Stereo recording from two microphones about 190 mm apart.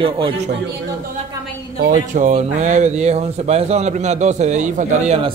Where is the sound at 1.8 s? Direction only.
40° right (ahead or behind).